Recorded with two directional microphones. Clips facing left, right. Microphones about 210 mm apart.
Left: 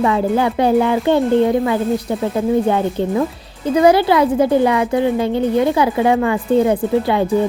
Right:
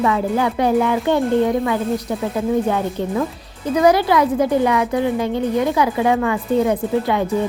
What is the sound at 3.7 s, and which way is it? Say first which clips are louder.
Speech: left 2 dB; 30° left (ahead or behind).